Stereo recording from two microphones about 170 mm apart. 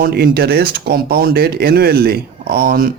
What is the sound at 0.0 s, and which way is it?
Speech, 70° right (ahead or behind).